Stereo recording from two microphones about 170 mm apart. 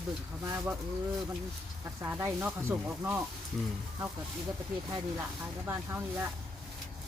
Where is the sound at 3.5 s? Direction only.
5° left (ahead or behind).